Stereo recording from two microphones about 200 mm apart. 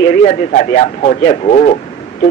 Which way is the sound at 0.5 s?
35° left (ahead or behind).